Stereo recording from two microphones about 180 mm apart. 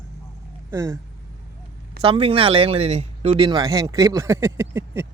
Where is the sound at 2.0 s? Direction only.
30° right (ahead or behind).